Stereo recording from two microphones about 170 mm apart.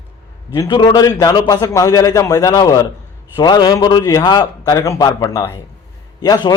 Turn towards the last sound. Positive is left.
turn(degrees=25)  # may be behind; listen again after turning